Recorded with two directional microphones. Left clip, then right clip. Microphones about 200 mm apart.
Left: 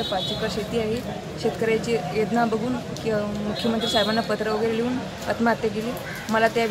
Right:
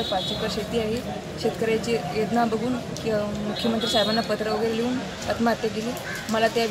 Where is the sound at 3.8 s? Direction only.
5° left (ahead or behind).